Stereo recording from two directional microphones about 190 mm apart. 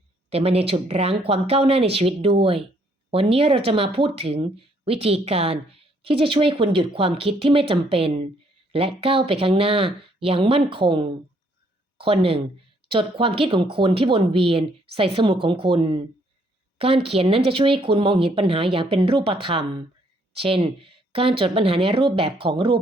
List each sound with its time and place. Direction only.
0.3 s speech: 30° right (ahead or behind)